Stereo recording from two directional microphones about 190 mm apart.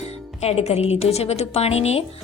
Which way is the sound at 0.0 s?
35° left (ahead or behind).